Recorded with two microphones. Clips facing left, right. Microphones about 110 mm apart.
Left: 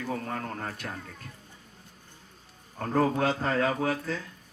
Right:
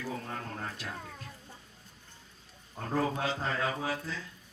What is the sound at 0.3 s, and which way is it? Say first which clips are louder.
Speech: left 5 dB; 55° left (ahead or behind).